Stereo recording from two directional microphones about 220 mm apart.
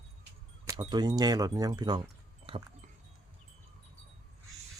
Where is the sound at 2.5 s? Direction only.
25° right (ahead or behind).